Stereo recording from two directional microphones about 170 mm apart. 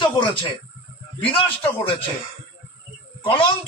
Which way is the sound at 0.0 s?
30° left (ahead or behind).